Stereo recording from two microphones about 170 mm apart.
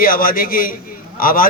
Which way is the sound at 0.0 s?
55° left (ahead or behind).